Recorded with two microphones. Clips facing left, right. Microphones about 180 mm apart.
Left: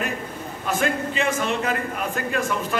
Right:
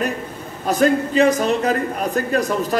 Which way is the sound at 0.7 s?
40° right (ahead or behind).